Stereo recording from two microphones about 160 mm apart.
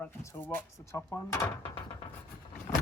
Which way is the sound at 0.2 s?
15° left (ahead or behind).